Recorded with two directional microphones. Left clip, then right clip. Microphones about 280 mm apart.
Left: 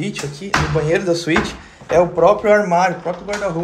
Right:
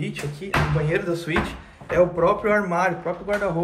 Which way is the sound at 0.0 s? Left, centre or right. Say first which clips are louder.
Left 5 dB; centre.